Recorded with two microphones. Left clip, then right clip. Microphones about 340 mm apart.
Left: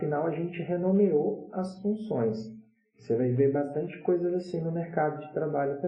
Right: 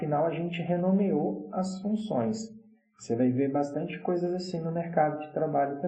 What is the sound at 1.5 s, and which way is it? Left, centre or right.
Speech, centre.